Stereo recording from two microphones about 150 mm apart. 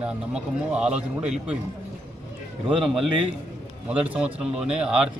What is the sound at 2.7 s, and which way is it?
A man's voice, 5° right (ahead or behind).